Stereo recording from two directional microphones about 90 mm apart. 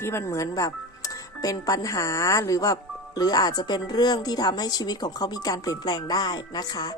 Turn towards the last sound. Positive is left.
turn(degrees=45)  # may be behind; listen again after turning